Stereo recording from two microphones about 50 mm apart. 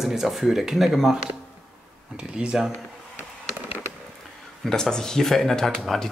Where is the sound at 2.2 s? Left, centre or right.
Centre.